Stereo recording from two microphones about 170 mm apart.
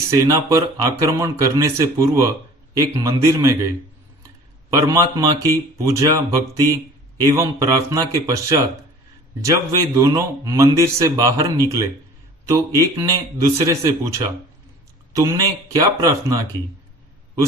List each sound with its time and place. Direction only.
0.1 s a man's voice: 20° right (ahead or behind)
4.7 s a man's voice: 20° right (ahead or behind)